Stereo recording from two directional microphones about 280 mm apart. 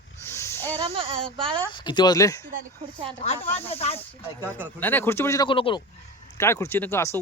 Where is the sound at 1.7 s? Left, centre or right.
Centre.